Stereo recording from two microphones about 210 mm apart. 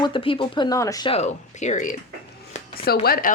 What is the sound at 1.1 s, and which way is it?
Speech, 35° left (ahead or behind).